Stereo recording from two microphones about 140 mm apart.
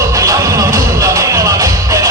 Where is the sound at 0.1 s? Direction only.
25° right (ahead or behind).